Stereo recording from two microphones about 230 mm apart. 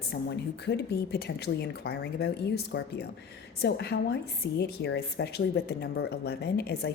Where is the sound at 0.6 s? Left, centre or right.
Left.